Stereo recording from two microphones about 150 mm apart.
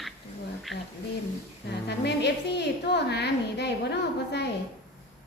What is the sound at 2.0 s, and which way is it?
A woman's voice, 90° left.